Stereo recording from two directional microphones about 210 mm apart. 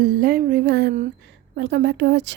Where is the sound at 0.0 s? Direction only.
45° right (ahead or behind).